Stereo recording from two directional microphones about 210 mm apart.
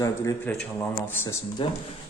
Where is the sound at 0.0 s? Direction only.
15° left (ahead or behind).